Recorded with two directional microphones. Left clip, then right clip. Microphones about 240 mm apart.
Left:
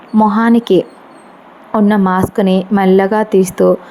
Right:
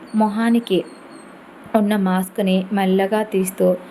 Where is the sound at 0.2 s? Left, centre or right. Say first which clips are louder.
Left 8 dB; left.